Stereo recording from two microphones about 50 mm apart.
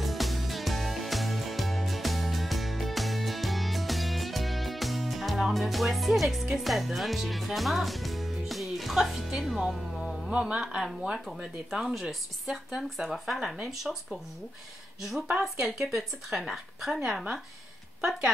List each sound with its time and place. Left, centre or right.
0.0 s music: centre
6.6 s speech: centre
10.3 s speech: right
11.7 s speech: centre